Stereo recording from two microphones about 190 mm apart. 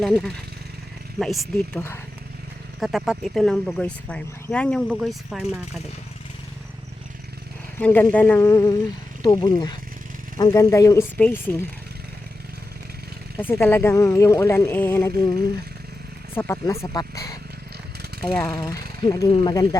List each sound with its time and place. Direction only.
0.0 s speech: 5° left (ahead or behind)
2.8 s speech: centre (ahead or behind)
7.8 s speech: 10° left (ahead or behind)
13.4 s speech: 10° left (ahead or behind)
16.3 s speech: 15° left (ahead or behind)
18.1 s jackhammer: 60° right (ahead or behind)
18.5 s speech: 25° left (ahead or behind)